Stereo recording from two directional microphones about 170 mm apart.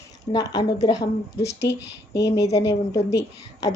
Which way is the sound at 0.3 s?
25° left (ahead or behind).